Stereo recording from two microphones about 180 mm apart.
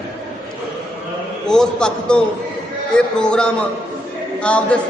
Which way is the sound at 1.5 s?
5° left (ahead or behind).